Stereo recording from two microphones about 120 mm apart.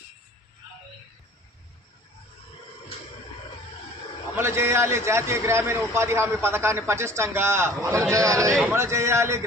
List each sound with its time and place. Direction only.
4.4 s a man's voice: 20° right (ahead or behind)